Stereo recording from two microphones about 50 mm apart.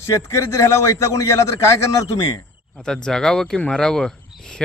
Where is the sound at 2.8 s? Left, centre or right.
Centre.